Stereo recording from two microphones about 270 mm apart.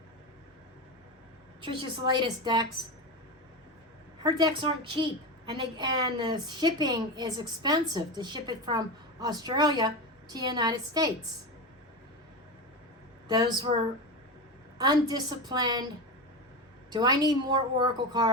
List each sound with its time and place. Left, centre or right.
1.6 s a woman's voice: centre
4.2 s a woman's voice: centre
13.2 s a woman's voice: centre
14.8 s a woman's voice: centre
16.9 s a woman's voice: centre